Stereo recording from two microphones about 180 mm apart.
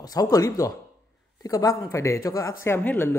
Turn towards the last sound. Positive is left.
turn(degrees=10)  # may be behind; listen again after turning